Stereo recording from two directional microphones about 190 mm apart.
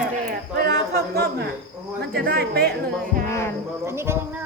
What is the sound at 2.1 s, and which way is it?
Speech, 55° right (ahead or behind).